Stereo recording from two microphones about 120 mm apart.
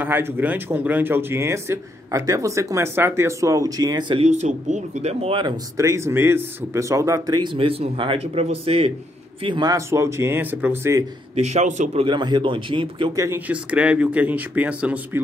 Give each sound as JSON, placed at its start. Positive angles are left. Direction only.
{"t": 0.0, "sound": "speech", "side_deg": -15}
{"t": 4.2, "sound": "speech", "side_deg": -70}
{"t": 5.8, "sound": "speech", "side_deg": -25}
{"t": 7.5, "sound": "speech", "side_deg": -50}
{"t": 9.4, "sound": "a man's voice", "side_deg": -40}
{"t": 9.8, "sound": "speech", "side_deg": -25}
{"t": 11.3, "sound": "speech", "side_deg": -70}
{"t": 12.0, "sound": "speech", "side_deg": -40}
{"t": 13.1, "sound": "speech", "side_deg": -25}
{"t": 13.5, "sound": "speech", "side_deg": -10}